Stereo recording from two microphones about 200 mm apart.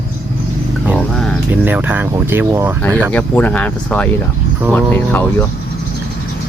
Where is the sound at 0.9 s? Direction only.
5° left (ahead or behind).